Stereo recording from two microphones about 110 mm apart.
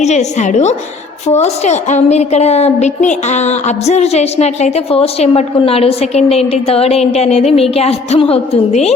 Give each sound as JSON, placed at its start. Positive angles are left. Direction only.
{"t": 0.0, "sound": "a woman's voice", "side_deg": 90}